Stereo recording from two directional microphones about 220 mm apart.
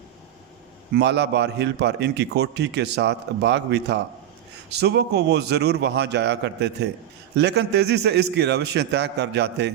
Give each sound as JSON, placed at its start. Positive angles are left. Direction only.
{"t": 0.9, "sound": "a man's voice", "side_deg": -50}